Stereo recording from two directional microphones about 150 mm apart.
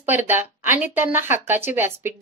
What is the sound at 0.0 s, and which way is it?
A woman's voice, 15° right (ahead or behind).